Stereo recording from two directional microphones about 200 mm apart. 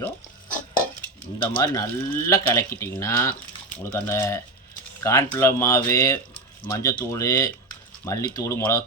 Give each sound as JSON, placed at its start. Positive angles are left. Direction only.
{"t": 1.5, "sound": "speech", "side_deg": 15}